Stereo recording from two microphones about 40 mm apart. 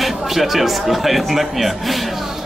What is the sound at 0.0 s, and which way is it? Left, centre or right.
Speech, centre.